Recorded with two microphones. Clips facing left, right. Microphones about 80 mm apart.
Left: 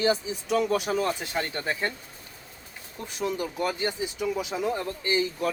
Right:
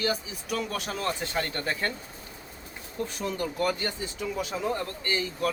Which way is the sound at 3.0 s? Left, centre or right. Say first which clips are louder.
Left 1 dB; centre.